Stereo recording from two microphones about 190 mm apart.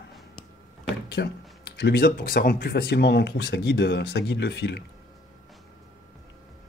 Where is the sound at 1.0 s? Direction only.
60° left (ahead or behind).